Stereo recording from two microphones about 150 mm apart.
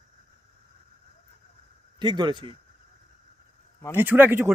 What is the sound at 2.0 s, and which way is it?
Speech, 30° right (ahead or behind).